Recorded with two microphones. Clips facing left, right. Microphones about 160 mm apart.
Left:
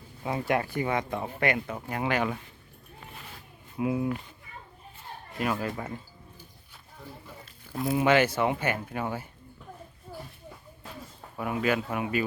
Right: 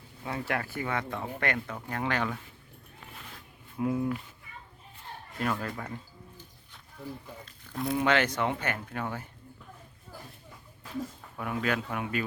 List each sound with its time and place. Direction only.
0.2 s speech: 20° left (ahead or behind)
3.8 s speech: 10° left (ahead or behind)
5.4 s speech: 10° left (ahead or behind)
7.4 s speech: 5° left (ahead or behind)
11.3 s speech: 5° left (ahead or behind)